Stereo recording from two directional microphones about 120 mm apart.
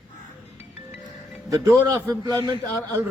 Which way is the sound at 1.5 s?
25° right (ahead or behind).